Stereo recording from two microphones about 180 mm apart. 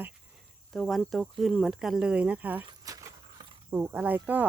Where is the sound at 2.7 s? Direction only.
20° right (ahead or behind).